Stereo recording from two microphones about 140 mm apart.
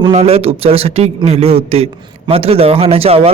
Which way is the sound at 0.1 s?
45° right (ahead or behind).